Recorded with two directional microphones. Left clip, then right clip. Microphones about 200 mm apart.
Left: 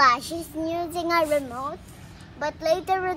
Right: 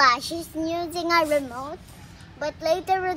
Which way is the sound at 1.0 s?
35° right (ahead or behind).